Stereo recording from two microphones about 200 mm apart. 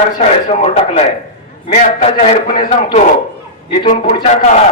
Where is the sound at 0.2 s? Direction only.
30° left (ahead or behind).